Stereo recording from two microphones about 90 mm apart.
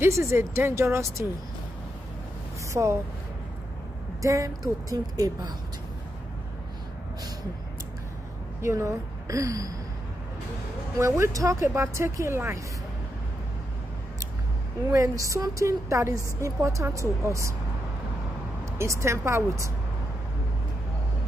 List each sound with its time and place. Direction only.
0.0 s speech: 30° right (ahead or behind)
2.7 s speech: 35° right (ahead or behind)
4.2 s speech: 35° right (ahead or behind)
8.5 s speech: 35° right (ahead or behind)
11.0 s speech: 30° right (ahead or behind)
14.9 s speech: 35° right (ahead or behind)
18.8 s speech: 35° right (ahead or behind)